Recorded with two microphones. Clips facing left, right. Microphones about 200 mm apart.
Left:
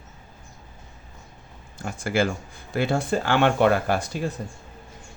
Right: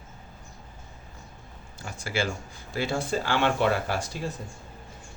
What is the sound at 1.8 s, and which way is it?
Speech, 55° left (ahead or behind).